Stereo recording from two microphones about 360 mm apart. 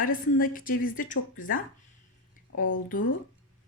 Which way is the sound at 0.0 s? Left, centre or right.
Left.